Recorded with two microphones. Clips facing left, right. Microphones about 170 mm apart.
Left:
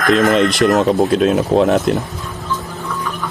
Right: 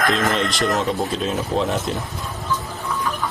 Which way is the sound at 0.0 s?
Centre (ahead or behind).